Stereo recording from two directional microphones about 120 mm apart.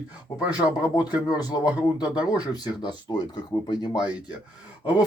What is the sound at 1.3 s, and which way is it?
Speech, 30° left (ahead or behind).